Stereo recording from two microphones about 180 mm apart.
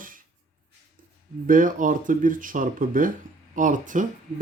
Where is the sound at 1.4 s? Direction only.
45° right (ahead or behind).